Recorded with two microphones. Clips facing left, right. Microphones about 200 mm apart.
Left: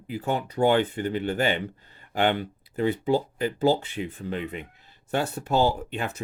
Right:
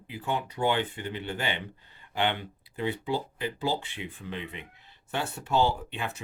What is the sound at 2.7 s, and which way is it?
Speech, 45° left (ahead or behind).